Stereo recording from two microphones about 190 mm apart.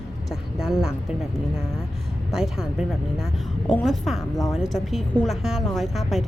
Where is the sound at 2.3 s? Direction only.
5° right (ahead or behind).